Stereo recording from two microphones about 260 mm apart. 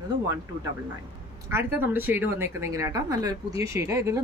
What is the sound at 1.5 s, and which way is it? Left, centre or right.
Speech, centre.